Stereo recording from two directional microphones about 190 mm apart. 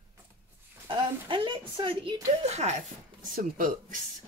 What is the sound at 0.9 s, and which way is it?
A woman's voice, 25° right (ahead or behind).